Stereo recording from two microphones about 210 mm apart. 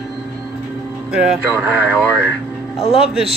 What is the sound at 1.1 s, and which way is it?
Speech, 5° right (ahead or behind).